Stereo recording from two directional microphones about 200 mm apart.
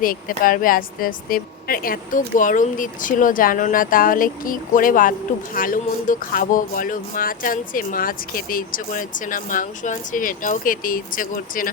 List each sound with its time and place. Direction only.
0.0 s speech: 45° left (ahead or behind)